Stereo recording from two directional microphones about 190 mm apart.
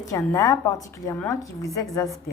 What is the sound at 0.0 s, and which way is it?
A woman's voice, 15° left (ahead or behind).